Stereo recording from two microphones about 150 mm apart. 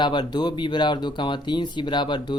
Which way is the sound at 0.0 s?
30° left (ahead or behind).